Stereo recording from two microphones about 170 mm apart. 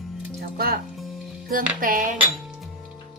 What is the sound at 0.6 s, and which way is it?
Speech, 60° right (ahead or behind).